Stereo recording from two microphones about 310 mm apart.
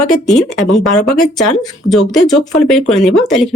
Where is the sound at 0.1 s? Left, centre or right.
Centre.